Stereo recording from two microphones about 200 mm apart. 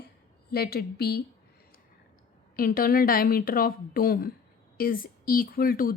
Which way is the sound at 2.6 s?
45° left (ahead or behind).